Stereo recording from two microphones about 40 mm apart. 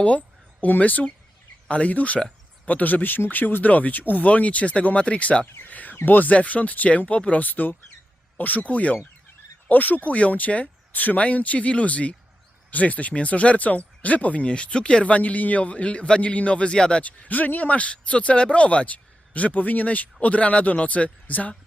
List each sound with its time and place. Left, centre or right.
0.0 s speech: left
5.6 s speech: left
7.4 s speech: left
14.4 s speech: left
15.0 s speech: left
17.0 s speech: left